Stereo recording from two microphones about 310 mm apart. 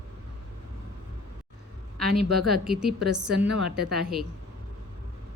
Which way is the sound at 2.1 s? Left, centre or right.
Right.